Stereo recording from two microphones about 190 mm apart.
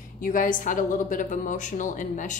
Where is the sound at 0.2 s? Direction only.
45° left (ahead or behind).